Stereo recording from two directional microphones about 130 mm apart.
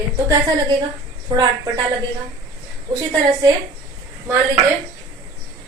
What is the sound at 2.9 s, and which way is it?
Speech, 30° right (ahead or behind).